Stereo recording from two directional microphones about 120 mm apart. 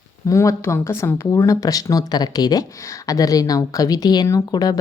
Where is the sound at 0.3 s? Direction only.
25° left (ahead or behind).